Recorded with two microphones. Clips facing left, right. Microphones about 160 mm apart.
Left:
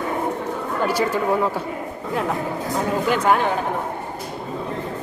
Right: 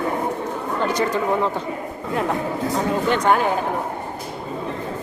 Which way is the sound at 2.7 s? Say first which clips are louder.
Even; centre (ahead or behind).